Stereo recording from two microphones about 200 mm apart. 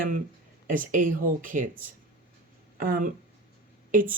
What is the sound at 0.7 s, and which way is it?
A woman's voice, 40° right (ahead or behind).